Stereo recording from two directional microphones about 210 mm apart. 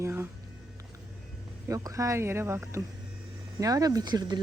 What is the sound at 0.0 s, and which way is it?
Music, 10° right (ahead or behind).